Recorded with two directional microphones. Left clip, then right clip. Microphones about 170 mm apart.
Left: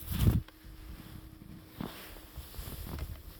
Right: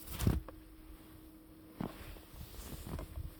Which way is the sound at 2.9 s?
80° left.